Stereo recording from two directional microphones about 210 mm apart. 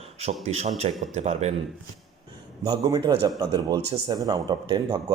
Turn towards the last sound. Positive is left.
turn(degrees=-20)  # may be behind; listen again after turning